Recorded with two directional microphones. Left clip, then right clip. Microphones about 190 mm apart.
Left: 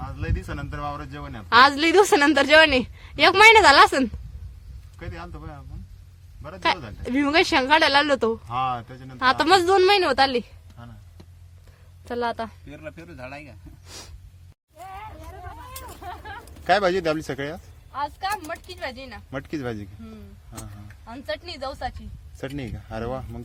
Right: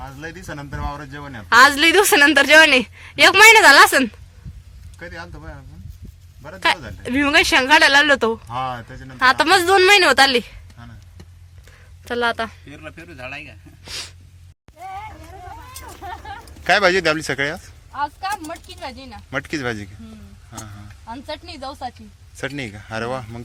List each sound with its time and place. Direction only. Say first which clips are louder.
0.2 s speech: right 3 dB; 30° left (ahead or behind)
1.5 s a woman's voice: right 4 dB; 5° left (ahead or behind)
4.9 s speech: right 5 dB; 40° left (ahead or behind)
7.0 s a woman's voice: right 5 dB; 10° left (ahead or behind)
8.4 s speech: even; 30° left (ahead or behind)
9.1 s a woman's voice: right 4 dB; centre (ahead or behind)
12.0 s a woman's voice: right 6 dB; centre (ahead or behind)
12.7 s speech: right 2 dB; 55° left (ahead or behind)
13.8 s a woman's voice: right 11 dB; 5° left (ahead or behind)
16.6 s a woman's voice: right 5 dB; 5° left (ahead or behind)
22.4 s a woman's voice: right 6 dB; 5° left (ahead or behind)